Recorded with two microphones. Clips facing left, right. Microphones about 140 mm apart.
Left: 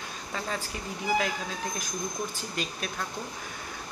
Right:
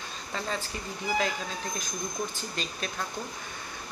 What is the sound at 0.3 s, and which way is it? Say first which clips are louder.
Speech: right 1 dB; 5° left (ahead or behind).